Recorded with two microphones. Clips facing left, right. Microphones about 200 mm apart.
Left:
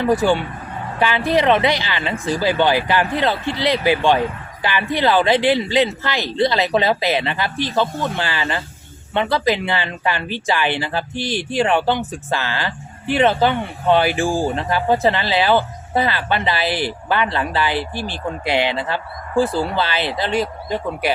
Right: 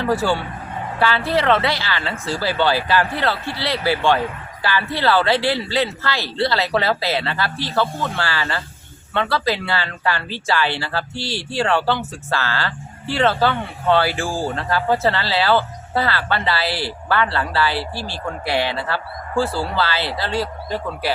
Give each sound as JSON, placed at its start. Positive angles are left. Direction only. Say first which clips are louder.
{"t": 0.0, "sound": "speech", "louder": "left 3 dB", "side_deg": 15}